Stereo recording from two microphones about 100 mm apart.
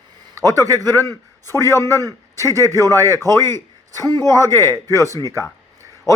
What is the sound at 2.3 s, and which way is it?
A man's voice, 35° right (ahead or behind).